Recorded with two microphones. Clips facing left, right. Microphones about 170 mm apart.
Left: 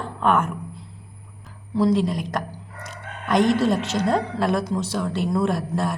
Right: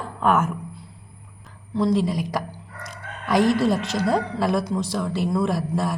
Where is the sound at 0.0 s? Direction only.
5° right (ahead or behind).